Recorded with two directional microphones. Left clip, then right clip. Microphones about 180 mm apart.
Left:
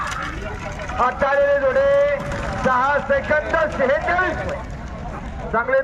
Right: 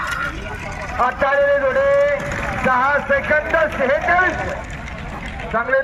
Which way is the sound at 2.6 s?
30° left (ahead or behind).